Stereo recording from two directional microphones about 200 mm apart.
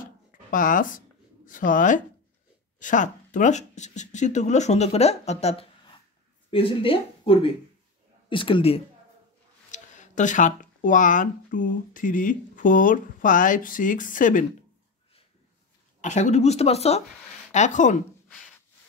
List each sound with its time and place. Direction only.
0.0 s a sound: 40° left (ahead or behind)
2.8 s speech: 40° left (ahead or behind)
9.7 s speech: 40° left (ahead or behind)
16.0 s speech: 35° left (ahead or behind)